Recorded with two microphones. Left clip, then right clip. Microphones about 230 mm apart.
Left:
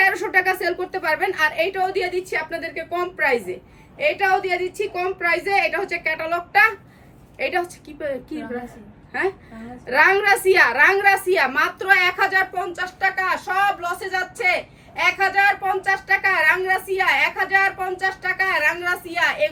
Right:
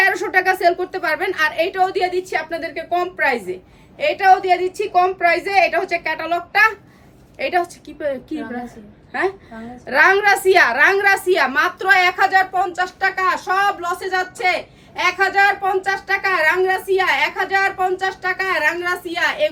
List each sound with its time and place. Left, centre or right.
0.0 s a woman's voice: centre
9.8 s a woman's voice: centre